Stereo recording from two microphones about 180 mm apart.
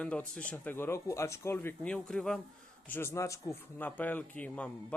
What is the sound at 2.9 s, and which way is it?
A man's voice, 15° left (ahead or behind).